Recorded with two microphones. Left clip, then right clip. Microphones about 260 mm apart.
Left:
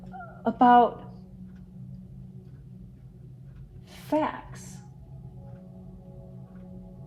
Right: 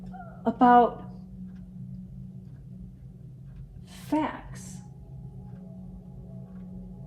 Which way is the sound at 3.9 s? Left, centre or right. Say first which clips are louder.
Left 2 dB; left.